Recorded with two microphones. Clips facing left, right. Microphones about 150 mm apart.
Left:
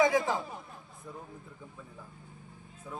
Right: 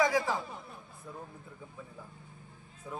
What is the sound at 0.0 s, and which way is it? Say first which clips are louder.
Speech: left 2 dB; 20° left (ahead or behind).